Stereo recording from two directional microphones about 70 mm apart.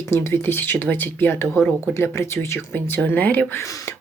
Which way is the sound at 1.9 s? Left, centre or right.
Left.